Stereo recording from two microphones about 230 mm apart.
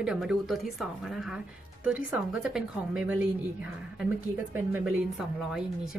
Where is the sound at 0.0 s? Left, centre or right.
Centre.